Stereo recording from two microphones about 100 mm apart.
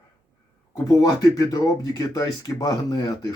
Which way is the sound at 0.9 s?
35° left (ahead or behind).